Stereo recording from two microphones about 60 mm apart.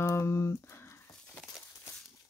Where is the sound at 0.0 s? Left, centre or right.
Left.